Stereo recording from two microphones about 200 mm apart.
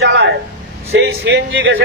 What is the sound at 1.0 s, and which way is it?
Speech, 70° right (ahead or behind).